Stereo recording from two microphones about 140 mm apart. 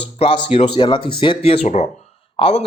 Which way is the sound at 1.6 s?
55° left (ahead or behind).